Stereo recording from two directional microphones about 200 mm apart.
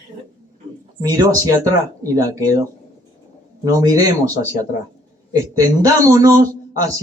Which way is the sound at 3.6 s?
15° right (ahead or behind).